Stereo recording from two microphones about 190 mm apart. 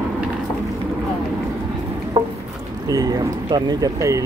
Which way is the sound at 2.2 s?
30° right (ahead or behind).